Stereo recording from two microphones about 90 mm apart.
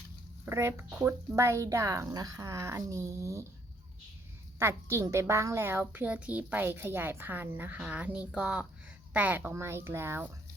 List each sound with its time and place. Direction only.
0.4 s a woman's voice: 25° right (ahead or behind)
4.6 s a woman's voice: 30° right (ahead or behind)